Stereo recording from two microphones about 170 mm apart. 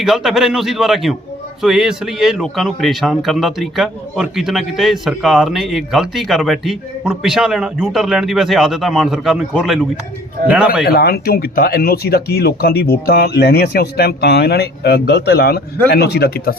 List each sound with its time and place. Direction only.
0.0 s a man's voice: centre (ahead or behind)
10.8 s speech: 65° left (ahead or behind)